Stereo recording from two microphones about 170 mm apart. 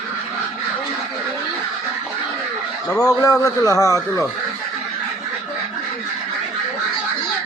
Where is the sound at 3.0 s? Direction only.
20° left (ahead or behind).